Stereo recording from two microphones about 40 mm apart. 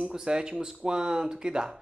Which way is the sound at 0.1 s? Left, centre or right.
Right.